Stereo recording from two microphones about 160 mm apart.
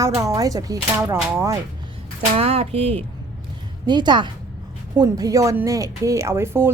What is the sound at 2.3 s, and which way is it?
A woman's voice, 40° right (ahead or behind).